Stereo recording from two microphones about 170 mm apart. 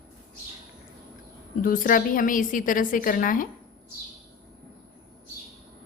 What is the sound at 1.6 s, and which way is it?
A woman's voice, 55° left (ahead or behind).